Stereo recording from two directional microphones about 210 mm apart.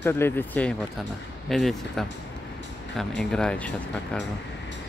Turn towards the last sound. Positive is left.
turn(degrees=5)  # may be behind; listen again after turning